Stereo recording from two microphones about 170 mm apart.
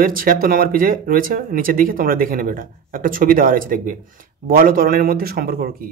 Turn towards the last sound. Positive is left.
turn(degrees=-60)  # may be behind; listen again after turning